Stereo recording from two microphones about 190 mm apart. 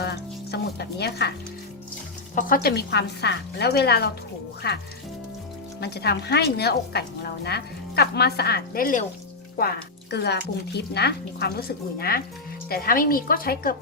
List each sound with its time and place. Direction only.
0.0 s music: 60° left (ahead or behind)
2.3 s a woman's voice: 50° left (ahead or behind)
5.8 s a woman's voice: 60° left (ahead or behind)
9.6 s a woman's voice: 55° left (ahead or behind)